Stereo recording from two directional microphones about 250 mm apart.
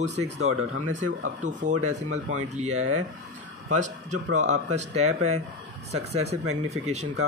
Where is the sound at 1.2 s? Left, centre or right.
Right.